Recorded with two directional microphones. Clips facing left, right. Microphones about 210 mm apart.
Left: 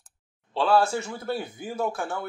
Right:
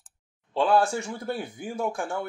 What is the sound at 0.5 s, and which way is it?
Speech, 15° right (ahead or behind).